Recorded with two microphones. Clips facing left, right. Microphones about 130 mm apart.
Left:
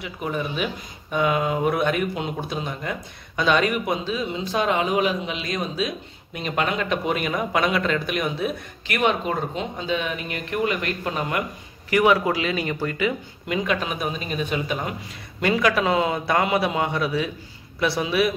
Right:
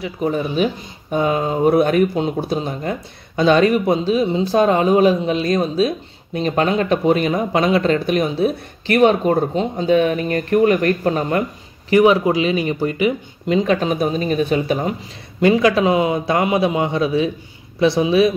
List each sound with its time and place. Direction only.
0.0 s speech: 35° right (ahead or behind)
11.9 s speech: 25° right (ahead or behind)
15.4 s speech: 25° right (ahead or behind)